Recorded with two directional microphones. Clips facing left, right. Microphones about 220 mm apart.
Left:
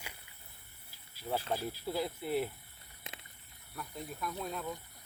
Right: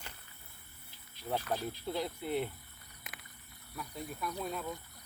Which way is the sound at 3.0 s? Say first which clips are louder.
Left 3 dB; 25° left (ahead or behind).